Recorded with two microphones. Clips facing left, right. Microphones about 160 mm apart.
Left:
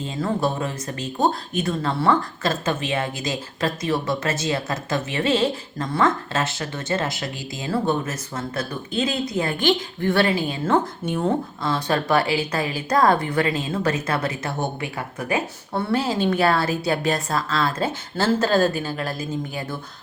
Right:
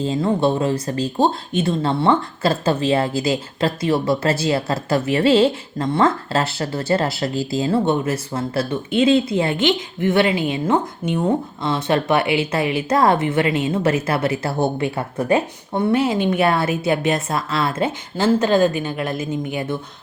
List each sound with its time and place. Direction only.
0.0 s speech: 30° right (ahead or behind)